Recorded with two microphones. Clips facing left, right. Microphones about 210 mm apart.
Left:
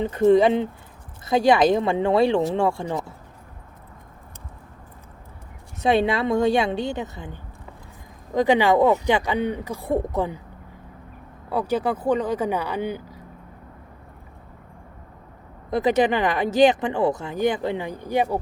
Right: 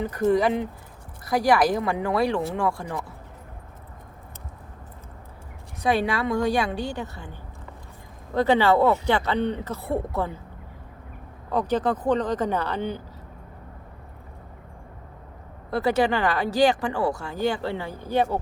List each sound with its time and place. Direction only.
0.0 s speech: 25° left (ahead or behind)
5.8 s speech: 25° left (ahead or behind)
11.4 s speech: 10° left (ahead or behind)
15.7 s speech: 20° left (ahead or behind)